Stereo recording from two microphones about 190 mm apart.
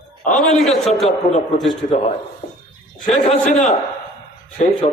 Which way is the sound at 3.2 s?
35° left (ahead or behind).